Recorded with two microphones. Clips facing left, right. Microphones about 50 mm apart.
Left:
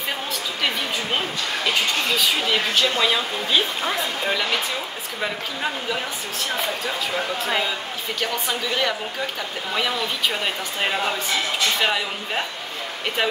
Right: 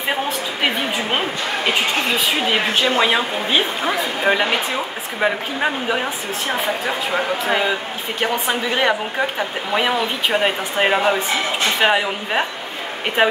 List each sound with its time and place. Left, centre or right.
0.1 s a woman's voice: right